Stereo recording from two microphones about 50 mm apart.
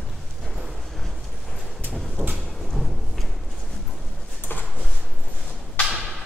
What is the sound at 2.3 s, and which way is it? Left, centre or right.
Music, centre.